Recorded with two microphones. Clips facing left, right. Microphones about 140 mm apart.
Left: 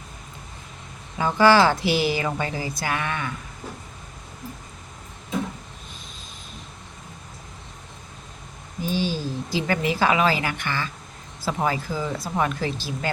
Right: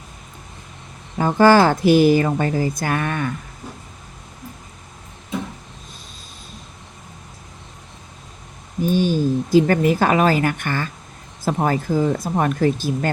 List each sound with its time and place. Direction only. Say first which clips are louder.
1.4 s speech: right 4 dB; 45° right (ahead or behind)
8.8 s speech: right 8 dB; 50° right (ahead or behind)